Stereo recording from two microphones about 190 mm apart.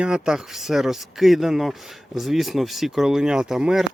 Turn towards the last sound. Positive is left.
turn(degrees=-5)  # may be behind; listen again after turning